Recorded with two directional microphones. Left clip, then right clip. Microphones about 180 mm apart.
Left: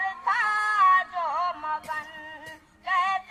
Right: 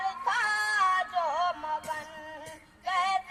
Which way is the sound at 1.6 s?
30° right (ahead or behind).